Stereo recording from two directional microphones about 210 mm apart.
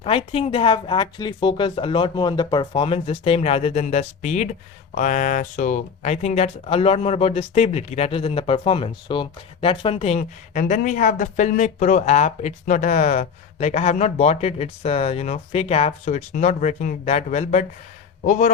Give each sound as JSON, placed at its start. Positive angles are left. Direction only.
{"t": 0.0, "sound": "speech", "side_deg": 25}